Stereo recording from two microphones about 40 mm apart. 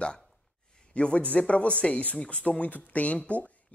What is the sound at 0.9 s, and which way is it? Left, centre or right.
A man's voice, left.